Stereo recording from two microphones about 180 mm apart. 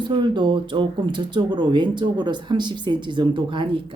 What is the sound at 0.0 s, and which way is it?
Speech, 25° right (ahead or behind).